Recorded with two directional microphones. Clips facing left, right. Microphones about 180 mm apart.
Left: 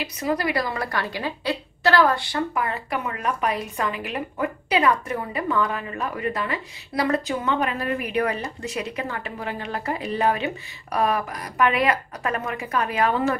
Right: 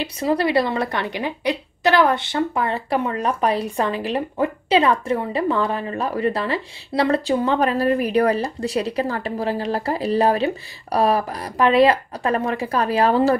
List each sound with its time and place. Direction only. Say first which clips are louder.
0.0 s a woman's voice: right 5 dB; 30° right (ahead or behind)